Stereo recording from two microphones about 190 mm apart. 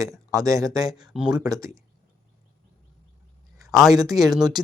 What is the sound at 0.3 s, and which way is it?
Speech, 15° right (ahead or behind).